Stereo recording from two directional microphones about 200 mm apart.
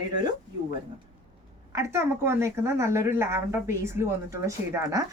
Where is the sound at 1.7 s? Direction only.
15° right (ahead or behind).